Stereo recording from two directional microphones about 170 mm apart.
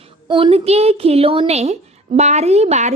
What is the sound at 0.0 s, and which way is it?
A woman's voice, 30° right (ahead or behind).